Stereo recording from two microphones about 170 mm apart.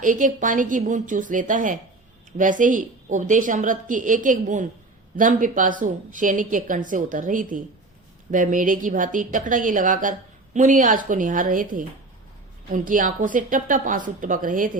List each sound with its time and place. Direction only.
0.0 s a woman's voice: 50° right (ahead or behind)